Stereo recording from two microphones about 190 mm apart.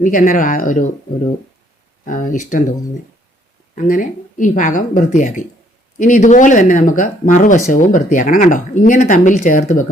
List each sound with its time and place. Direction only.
0.0 s speech: 45° left (ahead or behind)
2.0 s speech: 45° left (ahead or behind)
3.8 s speech: 45° left (ahead or behind)